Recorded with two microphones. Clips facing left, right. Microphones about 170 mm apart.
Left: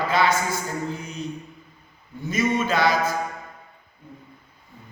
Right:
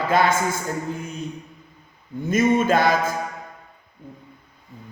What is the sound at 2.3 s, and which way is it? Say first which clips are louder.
Speech: right 5 dB; 50° right (ahead or behind).